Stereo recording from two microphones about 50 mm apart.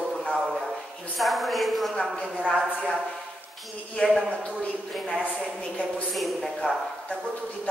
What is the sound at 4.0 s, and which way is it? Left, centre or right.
Speech, centre.